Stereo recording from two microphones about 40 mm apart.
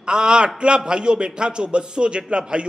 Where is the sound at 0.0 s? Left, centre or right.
Right.